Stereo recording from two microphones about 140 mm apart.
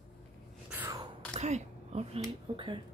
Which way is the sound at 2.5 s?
45° right (ahead or behind).